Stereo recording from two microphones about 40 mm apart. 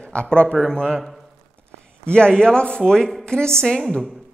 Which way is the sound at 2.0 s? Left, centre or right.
Left.